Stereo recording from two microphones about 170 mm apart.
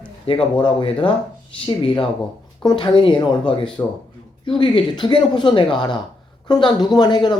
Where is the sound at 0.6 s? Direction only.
30° left (ahead or behind).